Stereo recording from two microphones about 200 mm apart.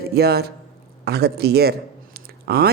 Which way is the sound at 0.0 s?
50° right (ahead or behind).